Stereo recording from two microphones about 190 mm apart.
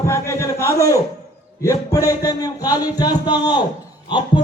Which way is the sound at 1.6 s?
15° left (ahead or behind).